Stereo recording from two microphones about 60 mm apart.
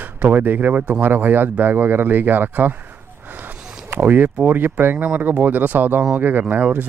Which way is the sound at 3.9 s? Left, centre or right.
Right.